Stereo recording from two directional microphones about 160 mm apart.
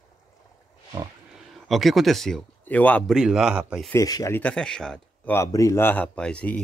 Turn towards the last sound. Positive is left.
turn(degrees=5)  # may be behind; listen again after turning